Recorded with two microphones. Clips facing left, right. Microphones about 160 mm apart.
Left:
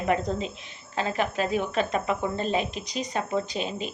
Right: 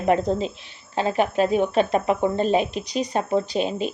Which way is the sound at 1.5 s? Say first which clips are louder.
Right 6 dB; 35° right (ahead or behind).